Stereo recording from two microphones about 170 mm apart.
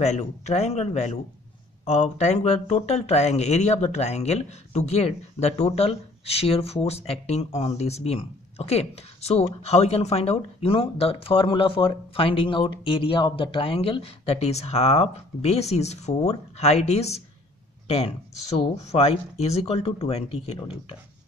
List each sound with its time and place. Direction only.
0.0 s speech: 40° left (ahead or behind)